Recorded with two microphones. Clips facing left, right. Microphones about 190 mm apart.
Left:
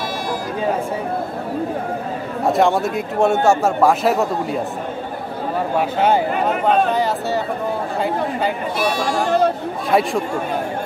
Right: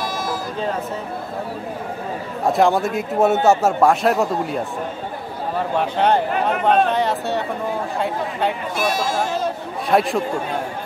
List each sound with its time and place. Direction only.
2.4 s speech: centre (ahead or behind)
5.8 s speech: 5° left (ahead or behind)
9.0 s speech: 60° left (ahead or behind)
9.8 s speech: centre (ahead or behind)